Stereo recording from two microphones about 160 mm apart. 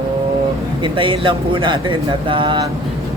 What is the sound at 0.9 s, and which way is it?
Speech, 30° right (ahead or behind).